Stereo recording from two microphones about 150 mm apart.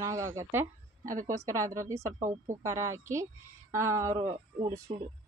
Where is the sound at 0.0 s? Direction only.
20° right (ahead or behind).